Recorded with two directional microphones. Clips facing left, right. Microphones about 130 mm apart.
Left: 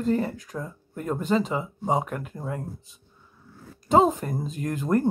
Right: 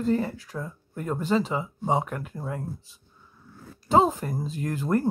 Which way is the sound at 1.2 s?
35° right (ahead or behind).